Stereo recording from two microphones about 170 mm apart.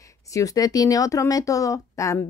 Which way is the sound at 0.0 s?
20° left (ahead or behind).